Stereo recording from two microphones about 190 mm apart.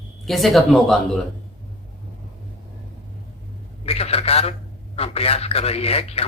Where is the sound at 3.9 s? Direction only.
30° left (ahead or behind).